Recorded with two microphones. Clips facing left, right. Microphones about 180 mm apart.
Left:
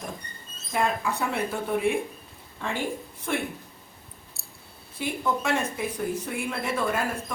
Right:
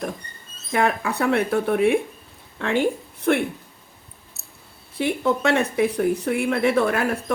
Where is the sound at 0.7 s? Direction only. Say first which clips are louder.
Right 5 dB; 70° right (ahead or behind).